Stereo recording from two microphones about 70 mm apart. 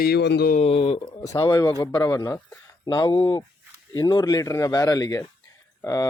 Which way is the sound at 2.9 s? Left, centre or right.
Left.